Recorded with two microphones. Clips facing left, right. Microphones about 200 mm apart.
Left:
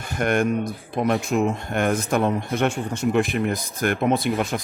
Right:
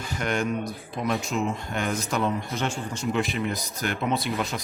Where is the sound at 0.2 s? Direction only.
55° left (ahead or behind).